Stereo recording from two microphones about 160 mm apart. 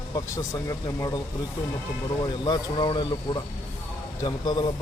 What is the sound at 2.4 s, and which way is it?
Speech, 25° left (ahead or behind).